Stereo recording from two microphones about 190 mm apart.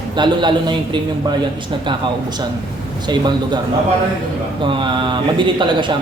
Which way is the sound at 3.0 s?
20° right (ahead or behind).